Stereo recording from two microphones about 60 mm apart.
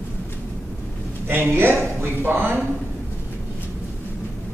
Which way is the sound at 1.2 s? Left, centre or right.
Right.